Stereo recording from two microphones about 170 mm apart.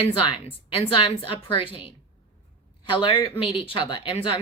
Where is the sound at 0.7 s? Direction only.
30° left (ahead or behind).